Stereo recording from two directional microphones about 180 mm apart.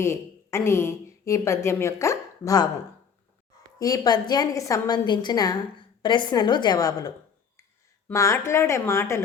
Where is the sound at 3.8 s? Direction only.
20° left (ahead or behind).